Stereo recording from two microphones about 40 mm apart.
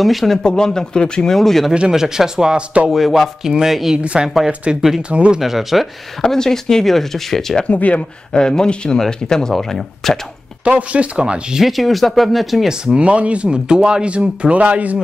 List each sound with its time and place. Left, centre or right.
0.0 s speech: centre
0.4 s a man's voice: centre
1.3 s speech: centre
1.9 s speech: centre
2.9 s speech: centre
4.0 s speech: right
5.4 s speech: centre
6.2 s speech: centre
7.6 s speech: left
8.3 s a man's voice: centre
10.6 s speech: right
11.6 s speech: centre
12.6 s speech: centre
13.0 s speech: right